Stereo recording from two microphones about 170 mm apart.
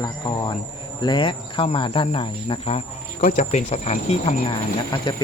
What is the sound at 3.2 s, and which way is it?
Speech, 45° left (ahead or behind).